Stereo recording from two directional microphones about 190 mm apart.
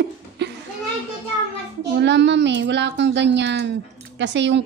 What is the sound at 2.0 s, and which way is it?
Speech, 65° right (ahead or behind).